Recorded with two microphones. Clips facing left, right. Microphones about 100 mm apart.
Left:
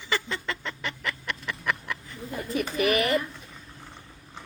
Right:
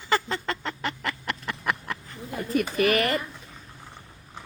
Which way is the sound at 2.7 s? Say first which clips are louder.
Even; 50° right (ahead or behind).